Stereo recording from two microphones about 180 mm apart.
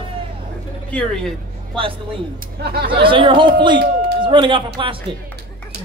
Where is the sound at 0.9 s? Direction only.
5° left (ahead or behind).